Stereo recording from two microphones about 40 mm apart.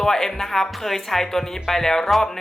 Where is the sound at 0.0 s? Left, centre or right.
Centre.